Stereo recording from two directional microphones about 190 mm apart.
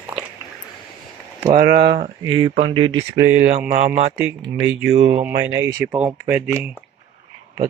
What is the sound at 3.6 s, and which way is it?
Speech, 45° right (ahead or behind).